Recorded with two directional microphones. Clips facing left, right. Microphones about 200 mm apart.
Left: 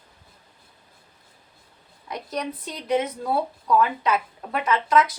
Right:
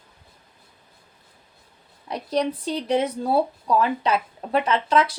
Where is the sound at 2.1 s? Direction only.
30° right (ahead or behind).